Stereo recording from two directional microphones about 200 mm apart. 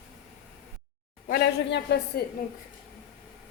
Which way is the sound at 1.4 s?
60° left (ahead or behind).